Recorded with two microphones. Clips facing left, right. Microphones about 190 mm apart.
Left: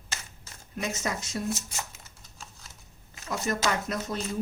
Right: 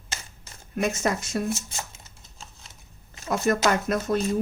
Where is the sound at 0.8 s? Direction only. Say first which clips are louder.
Right 7 dB; 55° right (ahead or behind).